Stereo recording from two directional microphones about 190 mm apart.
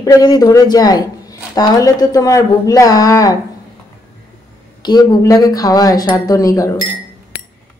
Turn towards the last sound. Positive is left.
turn(degrees=15)  # may be behind; listen again after turning